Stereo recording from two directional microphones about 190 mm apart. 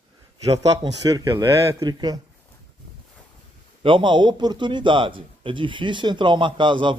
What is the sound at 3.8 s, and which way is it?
A man's voice, 25° right (ahead or behind).